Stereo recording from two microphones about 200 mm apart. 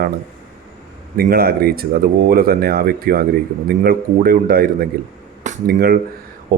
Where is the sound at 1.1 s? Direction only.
50° right (ahead or behind).